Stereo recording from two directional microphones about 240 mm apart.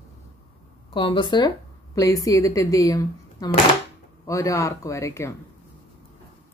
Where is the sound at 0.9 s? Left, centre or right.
Centre.